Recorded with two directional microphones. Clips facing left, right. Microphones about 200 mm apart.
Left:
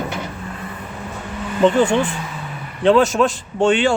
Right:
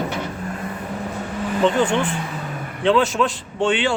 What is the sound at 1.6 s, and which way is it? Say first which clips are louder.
Speech: left 4 dB; 45° left (ahead or behind).